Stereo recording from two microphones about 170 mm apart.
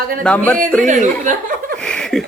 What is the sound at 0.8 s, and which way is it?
Speech, 45° right (ahead or behind).